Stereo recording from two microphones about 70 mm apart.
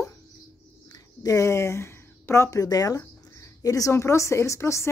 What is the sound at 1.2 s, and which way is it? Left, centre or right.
A woman's voice, left.